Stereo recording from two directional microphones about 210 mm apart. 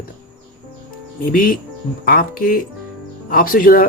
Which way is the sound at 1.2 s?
40° left (ahead or behind).